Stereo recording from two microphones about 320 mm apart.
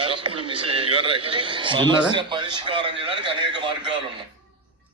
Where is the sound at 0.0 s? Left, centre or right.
Centre.